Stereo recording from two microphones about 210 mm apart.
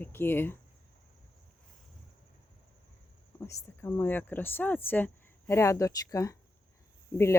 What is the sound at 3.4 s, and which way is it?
Speech, 10° left (ahead or behind).